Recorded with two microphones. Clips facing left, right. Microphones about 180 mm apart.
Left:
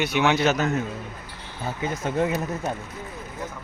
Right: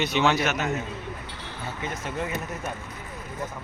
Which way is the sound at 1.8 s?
35° left (ahead or behind).